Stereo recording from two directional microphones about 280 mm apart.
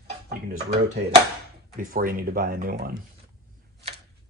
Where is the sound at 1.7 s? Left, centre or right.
Right.